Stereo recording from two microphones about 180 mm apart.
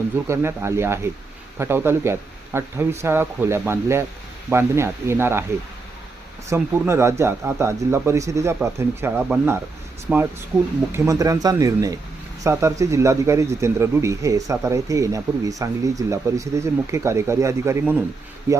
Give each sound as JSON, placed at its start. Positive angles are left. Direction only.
{"t": 0.3, "sound": "speech", "side_deg": -15}
{"t": 6.5, "sound": "speech", "side_deg": -15}
{"t": 10.9, "sound": "speech", "side_deg": -15}